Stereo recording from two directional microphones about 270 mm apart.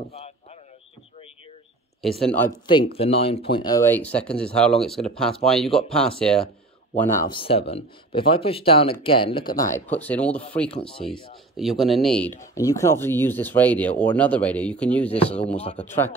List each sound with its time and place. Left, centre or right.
2.0 s speech: centre
2.6 s speech: centre
7.2 s speech: centre
10.7 s speech: centre
11.5 s speech: centre